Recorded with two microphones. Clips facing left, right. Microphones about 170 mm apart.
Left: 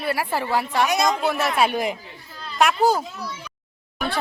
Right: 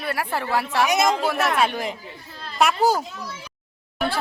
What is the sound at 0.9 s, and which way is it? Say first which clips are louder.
Speech: right 1 dB; 25° right (ahead or behind).